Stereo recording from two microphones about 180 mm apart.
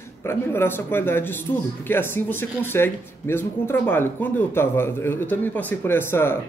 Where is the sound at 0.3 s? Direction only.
15° left (ahead or behind).